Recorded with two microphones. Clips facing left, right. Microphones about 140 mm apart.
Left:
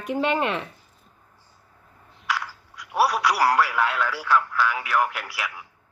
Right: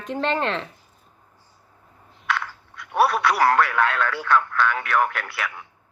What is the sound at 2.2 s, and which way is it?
Speech, 5° left (ahead or behind).